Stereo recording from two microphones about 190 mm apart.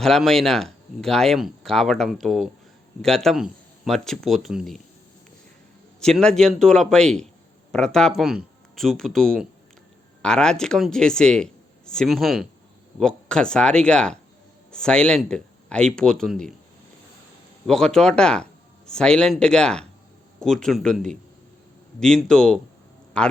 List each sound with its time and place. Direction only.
0.0 s speech: centre (ahead or behind)
6.0 s speech: 5° left (ahead or behind)
17.7 s speech: 5° left (ahead or behind)